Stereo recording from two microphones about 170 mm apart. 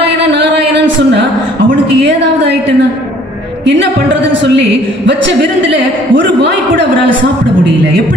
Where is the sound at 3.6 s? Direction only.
90° right.